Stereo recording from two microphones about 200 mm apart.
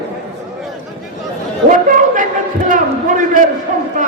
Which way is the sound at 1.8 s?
40° right (ahead or behind).